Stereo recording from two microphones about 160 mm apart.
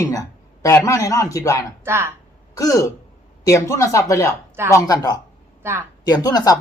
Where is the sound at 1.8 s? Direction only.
15° right (ahead or behind).